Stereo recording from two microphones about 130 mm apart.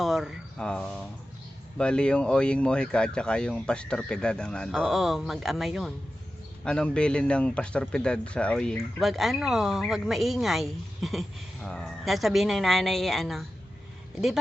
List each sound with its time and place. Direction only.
0.0 s speech: centre (ahead or behind)